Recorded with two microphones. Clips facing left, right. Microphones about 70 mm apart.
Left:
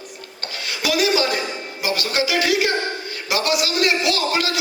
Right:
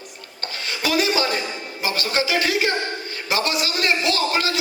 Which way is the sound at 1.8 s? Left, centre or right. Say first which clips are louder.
Left 1 dB; right.